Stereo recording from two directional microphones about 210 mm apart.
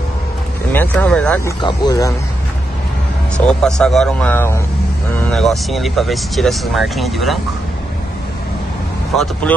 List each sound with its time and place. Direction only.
0.7 s speech: 5° left (ahead or behind)
1.6 s speech: 20° left (ahead or behind)
3.3 s speech: 5° left (ahead or behind)
9.1 s speech: centre (ahead or behind)